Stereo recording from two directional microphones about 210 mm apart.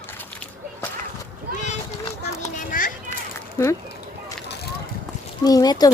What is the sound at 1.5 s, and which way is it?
Splash, 35° left (ahead or behind).